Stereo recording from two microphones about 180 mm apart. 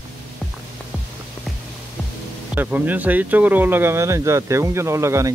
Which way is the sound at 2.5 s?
10° right (ahead or behind).